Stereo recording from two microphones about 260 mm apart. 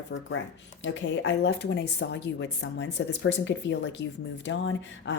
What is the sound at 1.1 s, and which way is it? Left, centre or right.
Speech, left.